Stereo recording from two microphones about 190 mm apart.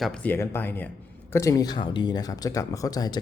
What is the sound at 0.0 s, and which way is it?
Speech, 5° left (ahead or behind).